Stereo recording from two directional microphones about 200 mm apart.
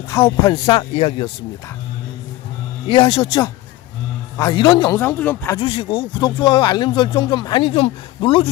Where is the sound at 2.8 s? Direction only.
25° left (ahead or behind).